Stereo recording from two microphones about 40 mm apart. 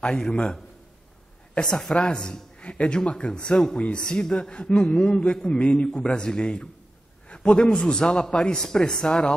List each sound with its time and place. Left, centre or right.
0.0 s a man's voice: centre
1.7 s a man's voice: centre
4.7 s a man's voice: centre
5.2 s a man's voice: left